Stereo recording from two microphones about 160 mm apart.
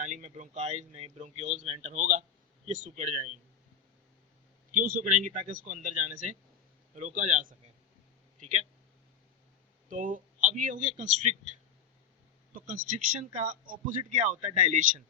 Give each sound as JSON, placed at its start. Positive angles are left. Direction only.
{"t": 0.0, "sound": "speech", "side_deg": -50}
{"t": 4.7, "sound": "speech", "side_deg": -60}
{"t": 9.9, "sound": "speech", "side_deg": -55}
{"t": 12.5, "sound": "speech", "side_deg": -60}